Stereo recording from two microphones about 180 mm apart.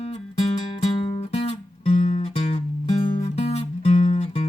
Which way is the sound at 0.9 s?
30° left (ahead or behind).